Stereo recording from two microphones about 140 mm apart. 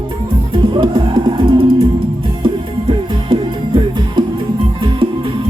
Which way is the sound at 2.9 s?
35° right (ahead or behind).